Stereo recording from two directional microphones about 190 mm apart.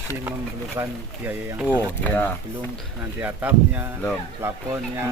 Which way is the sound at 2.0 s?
10° left (ahead or behind).